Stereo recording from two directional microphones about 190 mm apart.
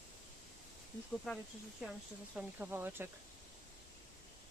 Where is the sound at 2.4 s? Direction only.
10° right (ahead or behind).